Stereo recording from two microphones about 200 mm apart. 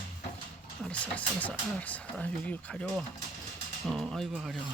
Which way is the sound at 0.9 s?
5° left (ahead or behind).